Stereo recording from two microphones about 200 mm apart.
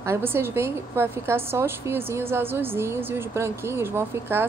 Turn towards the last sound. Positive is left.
turn(degrees=-10)  # may be behind; listen again after turning